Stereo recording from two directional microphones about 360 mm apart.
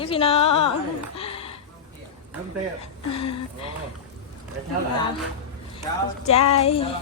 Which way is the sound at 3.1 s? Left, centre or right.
Centre.